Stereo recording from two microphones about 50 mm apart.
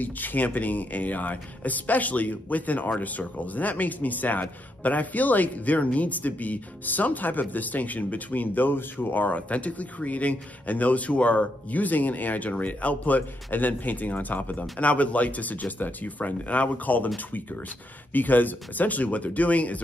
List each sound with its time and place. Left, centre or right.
0.0 s speech: left
18.1 s speech: left